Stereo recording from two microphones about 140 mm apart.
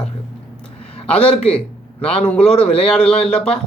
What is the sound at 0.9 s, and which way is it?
Speech, 45° left (ahead or behind).